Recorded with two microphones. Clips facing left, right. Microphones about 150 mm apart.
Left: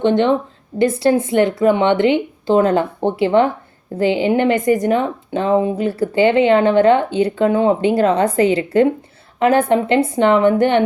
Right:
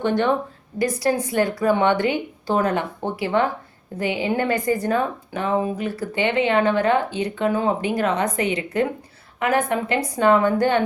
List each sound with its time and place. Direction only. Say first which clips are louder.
0.0 s speech: left 6 dB; 20° left (ahead or behind)